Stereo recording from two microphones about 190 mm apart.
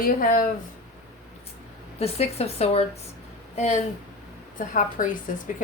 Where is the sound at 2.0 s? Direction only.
35° left (ahead or behind).